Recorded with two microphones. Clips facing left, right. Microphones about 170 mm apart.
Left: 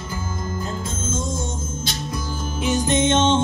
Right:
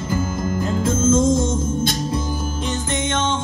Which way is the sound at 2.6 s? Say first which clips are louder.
Left 7 dB; 15° left (ahead or behind).